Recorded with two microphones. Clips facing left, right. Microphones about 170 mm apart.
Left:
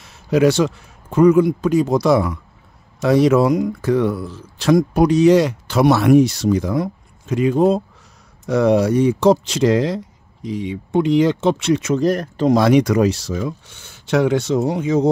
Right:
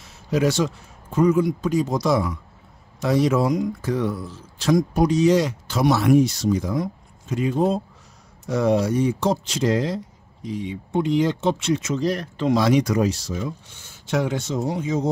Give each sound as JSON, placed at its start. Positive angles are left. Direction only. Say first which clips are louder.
{"t": 0.0, "sound": "speech", "louder": "left 6 dB", "side_deg": 65}
{"t": 12.6, "sound": "speech", "louder": "left 5 dB", "side_deg": 65}